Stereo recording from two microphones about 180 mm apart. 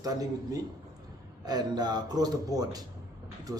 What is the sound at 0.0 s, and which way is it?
A man's voice, 20° right (ahead or behind).